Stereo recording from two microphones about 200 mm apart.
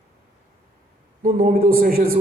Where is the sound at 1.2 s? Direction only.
45° right (ahead or behind).